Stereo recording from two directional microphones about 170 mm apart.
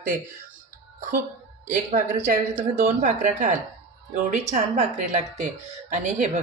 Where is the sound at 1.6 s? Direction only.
50° right (ahead or behind).